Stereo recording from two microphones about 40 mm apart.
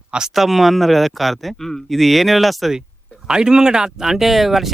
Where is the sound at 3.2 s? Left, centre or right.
Centre.